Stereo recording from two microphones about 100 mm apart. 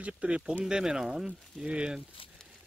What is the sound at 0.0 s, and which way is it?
Speech, 10° right (ahead or behind).